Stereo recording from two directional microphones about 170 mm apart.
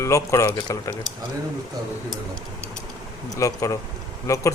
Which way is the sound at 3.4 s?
20° left (ahead or behind).